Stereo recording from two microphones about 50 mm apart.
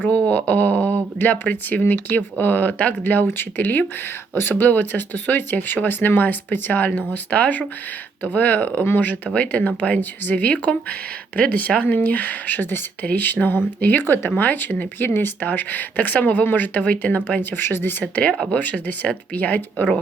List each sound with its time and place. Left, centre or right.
0.2 s speech: left
17.6 s speech: left
18.1 s speech: left